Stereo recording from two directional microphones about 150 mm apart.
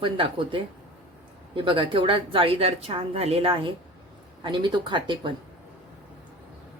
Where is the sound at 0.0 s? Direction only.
35° right (ahead or behind).